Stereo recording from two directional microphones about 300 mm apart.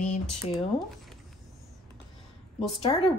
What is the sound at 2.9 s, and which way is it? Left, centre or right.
Speech, centre.